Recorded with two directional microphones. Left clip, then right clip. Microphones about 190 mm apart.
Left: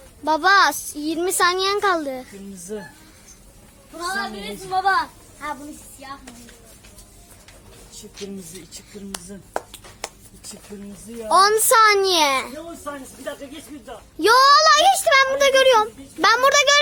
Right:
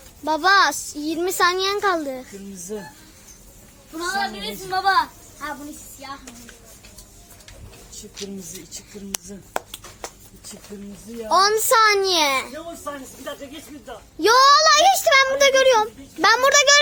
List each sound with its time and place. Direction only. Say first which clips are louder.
0.3 s a woman's voice: left 1 dB; 10° left (ahead or behind)
4.8 s a woman's voice: right 1 dB; 35° right (ahead or behind)
9.1 s speech: right 4 dB; 45° right (ahead or behind)
11.3 s a woman's voice: left 2 dB; 10° left (ahead or behind)